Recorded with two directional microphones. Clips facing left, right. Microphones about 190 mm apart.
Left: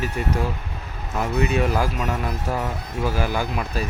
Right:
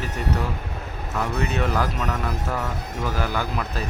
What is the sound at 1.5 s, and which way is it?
Speech, 10° left (ahead or behind).